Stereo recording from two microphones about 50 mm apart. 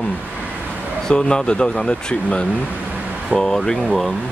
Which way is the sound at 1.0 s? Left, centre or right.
Centre.